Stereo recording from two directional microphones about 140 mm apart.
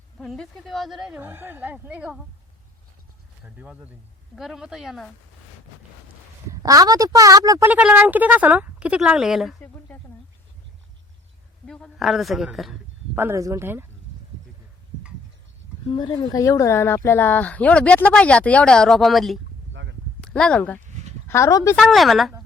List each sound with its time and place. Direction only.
0.2 s a woman's voice: 5° left (ahead or behind)
1.2 s speech: 15° right (ahead or behind)
3.4 s a woman's voice: 10° right (ahead or behind)
6.5 s speech: 25° right (ahead or behind)
7.7 s speech: 10° right (ahead or behind)
9.6 s a sound: 10° left (ahead or behind)
11.6 s a woman's voice: 5° left (ahead or behind)
13.1 s speech: 20° right (ahead or behind)
15.9 s a woman's voice: 40° left (ahead or behind)
16.3 s speech: 25° left (ahead or behind)
21.2 s speech: 20° left (ahead or behind)
21.8 s a woman's voice: centre (ahead or behind)